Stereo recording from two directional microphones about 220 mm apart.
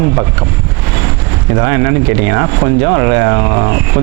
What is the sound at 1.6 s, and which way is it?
Speech, 20° right (ahead or behind).